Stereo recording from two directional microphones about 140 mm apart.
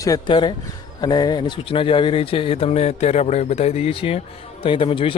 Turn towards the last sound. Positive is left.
turn(degrees=40)  # may be behind; listen again after turning